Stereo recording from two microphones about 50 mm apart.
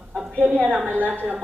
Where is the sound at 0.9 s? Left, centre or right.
Right.